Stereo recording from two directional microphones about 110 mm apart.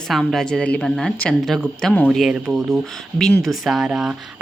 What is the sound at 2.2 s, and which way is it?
A woman's voice, 5° right (ahead or behind).